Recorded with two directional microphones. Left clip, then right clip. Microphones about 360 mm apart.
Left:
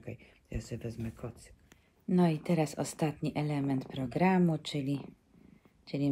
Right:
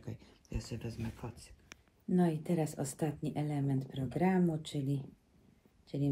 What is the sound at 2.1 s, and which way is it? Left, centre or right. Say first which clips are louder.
Speech: left 3 dB; centre.